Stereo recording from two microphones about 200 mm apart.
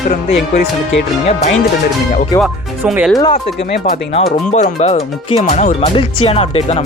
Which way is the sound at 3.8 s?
35° left (ahead or behind).